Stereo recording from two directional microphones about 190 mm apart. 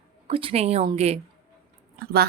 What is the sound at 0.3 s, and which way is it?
Speech, 30° right (ahead or behind).